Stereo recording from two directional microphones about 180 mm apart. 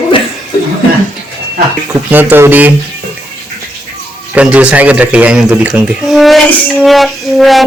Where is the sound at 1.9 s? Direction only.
10° right (ahead or behind).